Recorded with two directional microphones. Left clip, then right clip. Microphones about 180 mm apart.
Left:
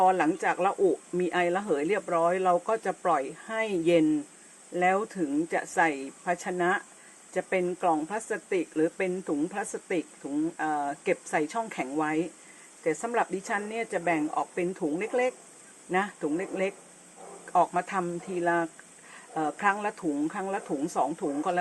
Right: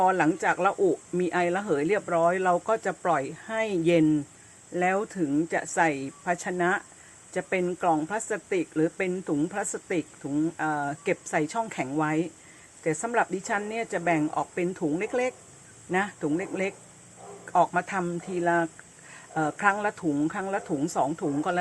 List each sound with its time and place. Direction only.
0.0 s speech: 10° right (ahead or behind)